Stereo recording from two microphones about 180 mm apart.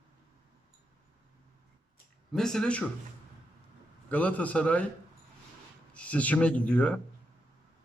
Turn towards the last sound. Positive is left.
turn(degrees=5)  # may be behind; listen again after turning